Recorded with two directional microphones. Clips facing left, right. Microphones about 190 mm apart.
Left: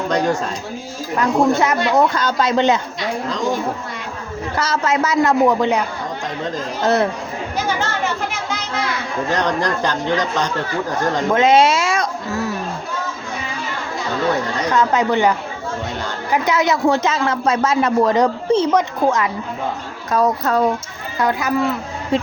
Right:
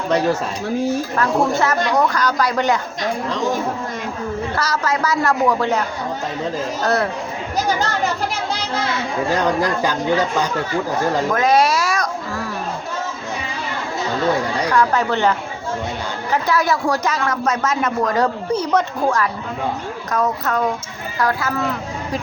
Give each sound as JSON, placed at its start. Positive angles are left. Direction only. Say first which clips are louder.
{"t": 0.1, "sound": "speech", "louder": "right 2 dB", "side_deg": -5}
{"t": 1.1, "sound": "speech", "louder": "left 7 dB", "side_deg": 15}
{"t": 4.5, "sound": "speech", "louder": "left 5 dB", "side_deg": 25}
{"t": 6.8, "sound": "speech", "louder": "left 3 dB", "side_deg": 20}
{"t": 7.8, "sound": "chatter", "louder": "right 1 dB", "side_deg": -35}
{"t": 9.3, "sound": "speech", "louder": "even", "side_deg": -5}
{"t": 11.3, "sound": "a sound", "louder": "left 5 dB", "side_deg": 25}
{"t": 14.7, "sound": "speech", "louder": "left 2 dB", "side_deg": 20}
{"t": 20.1, "sound": "a woman's voice", "louder": "left 4 dB", "side_deg": 30}
{"t": 21.2, "sound": "speech", "louder": "left 1 dB", "side_deg": 20}